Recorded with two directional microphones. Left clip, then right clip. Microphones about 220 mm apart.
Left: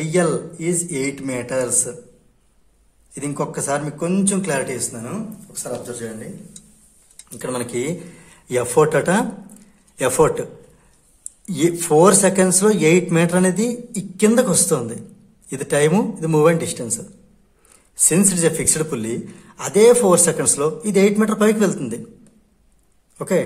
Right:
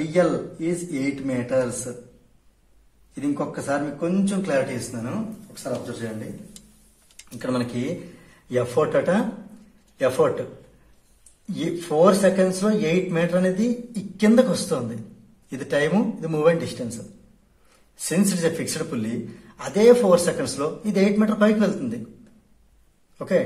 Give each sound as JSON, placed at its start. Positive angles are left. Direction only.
{"t": 0.1, "sound": "a man's voice", "side_deg": 45}
{"t": 3.2, "sound": "a man's voice", "side_deg": 45}
{"t": 7.2, "sound": "speech", "side_deg": 25}
{"t": 8.7, "sound": "a man's voice", "side_deg": 40}
{"t": 11.5, "sound": "a man's voice", "side_deg": 40}
{"t": 18.0, "sound": "a man's voice", "side_deg": 30}
{"t": 23.1, "sound": "speech", "side_deg": 35}